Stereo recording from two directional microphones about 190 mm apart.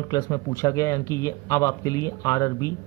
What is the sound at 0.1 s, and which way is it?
Speech, 15° left (ahead or behind).